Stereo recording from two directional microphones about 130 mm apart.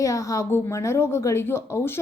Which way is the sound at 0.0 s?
25° left (ahead or behind).